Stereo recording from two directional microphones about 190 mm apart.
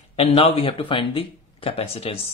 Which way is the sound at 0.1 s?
30° left (ahead or behind).